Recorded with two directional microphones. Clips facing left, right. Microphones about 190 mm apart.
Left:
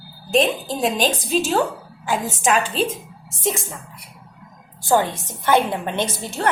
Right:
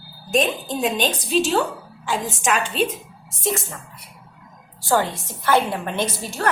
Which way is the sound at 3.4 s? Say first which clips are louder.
Left 1 dB; 15° left (ahead or behind).